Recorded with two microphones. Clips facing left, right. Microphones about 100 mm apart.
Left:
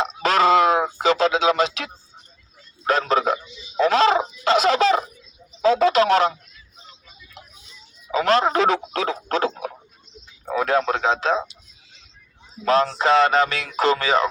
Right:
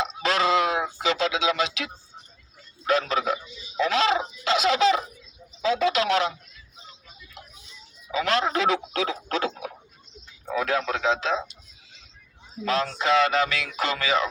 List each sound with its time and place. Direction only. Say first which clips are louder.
0.0 s a sound: left 5 dB; 45° left (ahead or behind)
2.8 s speech: left 4 dB; 40° left (ahead or behind)
3.8 s fowl: left 5 dB; 40° left (ahead or behind)
5.6 s a man's voice: left 6 dB; 40° left (ahead or behind)
8.1 s speech: left 6 dB; 40° left (ahead or behind)
12.6 s speech: left 6 dB; 40° left (ahead or behind)